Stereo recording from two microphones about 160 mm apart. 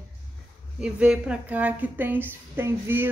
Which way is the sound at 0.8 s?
5° right (ahead or behind).